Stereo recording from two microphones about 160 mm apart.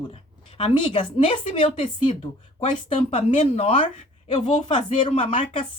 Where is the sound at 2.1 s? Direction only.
50° left (ahead or behind).